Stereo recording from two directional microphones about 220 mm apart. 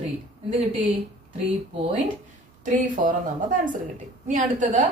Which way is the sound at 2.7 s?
35° right (ahead or behind).